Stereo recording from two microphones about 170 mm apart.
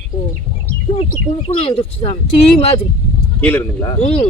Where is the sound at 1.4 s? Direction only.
35° left (ahead or behind).